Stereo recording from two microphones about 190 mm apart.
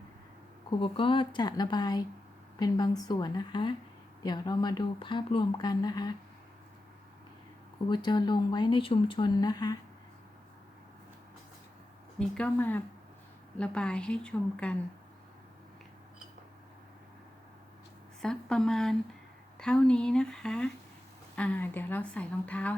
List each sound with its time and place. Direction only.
0.8 s speech: 25° left (ahead or behind)
7.9 s speech: 25° left (ahead or behind)
12.3 s a woman's voice: 5° left (ahead or behind)
18.2 s a woman's voice: 5° left (ahead or behind)